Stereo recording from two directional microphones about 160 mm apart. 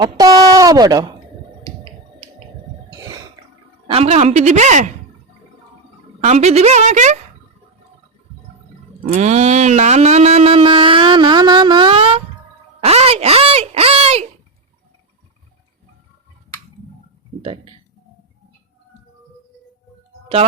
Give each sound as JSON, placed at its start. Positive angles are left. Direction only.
{"t": 0.0, "sound": "speech", "side_deg": -25}
{"t": 1.6, "sound": "finger snapping", "side_deg": -35}
{"t": 3.8, "sound": "a woman's voice", "side_deg": -40}
{"t": 6.2, "sound": "a woman's voice", "side_deg": -45}
{"t": 9.1, "sound": "a sound", "side_deg": -45}
{"t": 17.4, "sound": "a sound", "side_deg": -35}